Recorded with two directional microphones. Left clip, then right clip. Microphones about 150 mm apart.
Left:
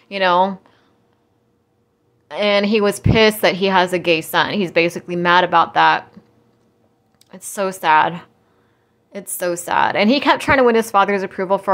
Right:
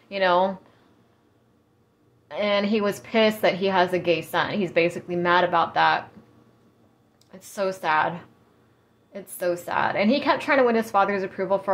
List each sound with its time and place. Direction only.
0.1 s speech: 35° left (ahead or behind)
2.2 s a woman's voice: 40° left (ahead or behind)
7.2 s a woman's voice: 45° left (ahead or behind)